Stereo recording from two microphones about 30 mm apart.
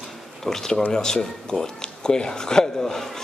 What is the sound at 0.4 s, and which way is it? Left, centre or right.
A man's voice, centre.